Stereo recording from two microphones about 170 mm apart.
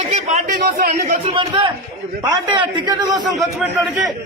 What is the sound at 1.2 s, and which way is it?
A man's voice, 30° right (ahead or behind).